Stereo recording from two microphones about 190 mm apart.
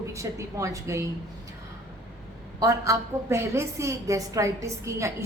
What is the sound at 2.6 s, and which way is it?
A woman's voice, 15° right (ahead or behind).